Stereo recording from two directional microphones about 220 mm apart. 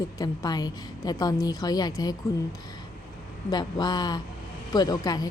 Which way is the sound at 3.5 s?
20° left (ahead or behind).